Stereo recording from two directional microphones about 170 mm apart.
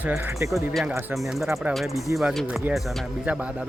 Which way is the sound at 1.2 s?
Centre (ahead or behind).